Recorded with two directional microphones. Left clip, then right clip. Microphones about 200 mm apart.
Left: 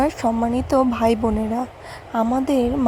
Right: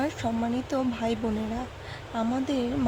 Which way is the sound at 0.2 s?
25° left (ahead or behind).